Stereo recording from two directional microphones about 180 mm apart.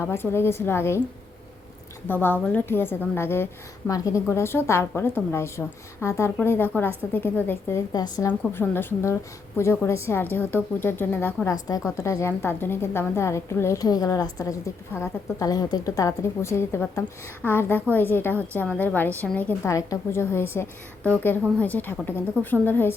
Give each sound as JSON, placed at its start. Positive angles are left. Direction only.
{"t": 0.0, "sound": "speech", "side_deg": 10}
{"t": 2.0, "sound": "speech", "side_deg": 10}